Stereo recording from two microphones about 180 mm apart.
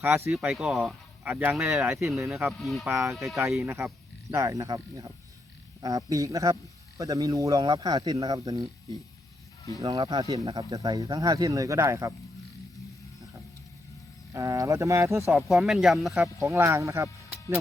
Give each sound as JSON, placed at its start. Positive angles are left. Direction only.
{"t": 0.0, "sound": "speech", "side_deg": -15}
{"t": 0.3, "sound": "speech", "side_deg": 0}
{"t": 2.3, "sound": "speech", "side_deg": 0}
{"t": 3.7, "sound": "a man's voice", "side_deg": -15}
{"t": 9.8, "sound": "a man's voice", "side_deg": -20}
{"t": 14.3, "sound": "speech", "side_deg": -15}
{"t": 15.3, "sound": "speech", "side_deg": 0}
{"t": 16.4, "sound": "speech", "side_deg": -15}